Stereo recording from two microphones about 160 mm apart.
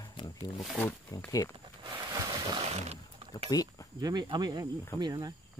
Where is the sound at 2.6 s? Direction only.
40° right (ahead or behind).